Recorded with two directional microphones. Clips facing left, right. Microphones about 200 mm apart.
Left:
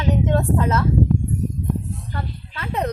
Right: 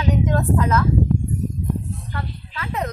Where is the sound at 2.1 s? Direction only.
30° left (ahead or behind).